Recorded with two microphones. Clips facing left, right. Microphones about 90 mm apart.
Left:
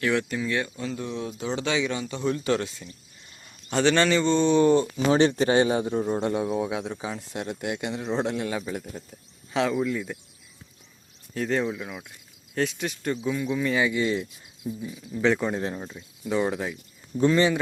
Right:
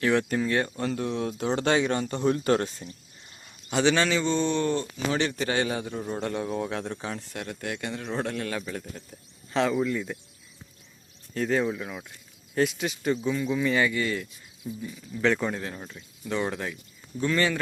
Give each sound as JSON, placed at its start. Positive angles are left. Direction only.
{"t": 0.0, "sound": "speech", "side_deg": -35}
{"t": 0.8, "sound": "speech", "side_deg": -60}
{"t": 3.7, "sound": "speech", "side_deg": -5}
{"t": 4.5, "sound": "speech", "side_deg": 15}
{"t": 5.1, "sound": "a man's voice", "side_deg": 30}
{"t": 7.3, "sound": "speech", "side_deg": 20}
{"t": 11.3, "sound": "speech", "side_deg": 0}
{"t": 13.8, "sound": "a man's voice", "side_deg": 15}
{"t": 14.6, "sound": "speech", "side_deg": 5}
{"t": 15.5, "sound": "a man's voice", "side_deg": 20}
{"t": 17.2, "sound": "a man's voice", "side_deg": 25}